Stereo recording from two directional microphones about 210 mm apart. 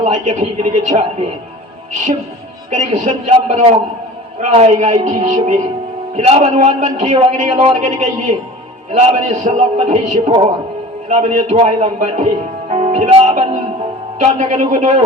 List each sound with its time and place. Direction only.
0.0 s a man's voice: 35° right (ahead or behind)
2.6 s a man's voice: 35° right (ahead or behind)
12.7 s music: 30° right (ahead or behind)
14.2 s a man's voice: 35° right (ahead or behind)